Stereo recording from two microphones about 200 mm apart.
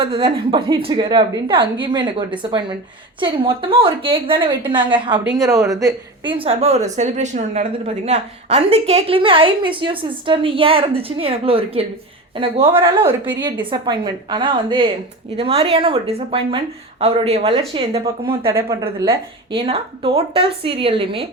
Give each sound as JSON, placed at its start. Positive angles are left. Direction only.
{"t": 0.0, "sound": "a woman's voice", "side_deg": -25}
{"t": 18.5, "sound": "speech", "side_deg": -15}
{"t": 18.9, "sound": "a woman's voice", "side_deg": -25}